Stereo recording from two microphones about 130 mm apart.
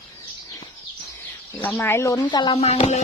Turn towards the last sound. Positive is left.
turn(degrees=55)  # may be behind; listen again after turning